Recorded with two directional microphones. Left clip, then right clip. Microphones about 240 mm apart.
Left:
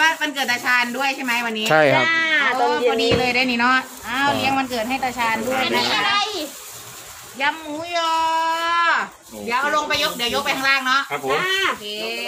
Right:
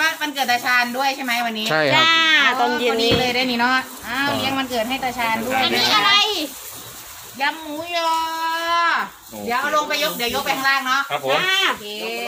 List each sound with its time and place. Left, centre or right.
0.0 s speech: centre
2.0 s sheep: right
3.1 s speech: centre
5.6 s a child's voice: right
7.3 s speech: centre
11.1 s speech: right
11.9 s speech: centre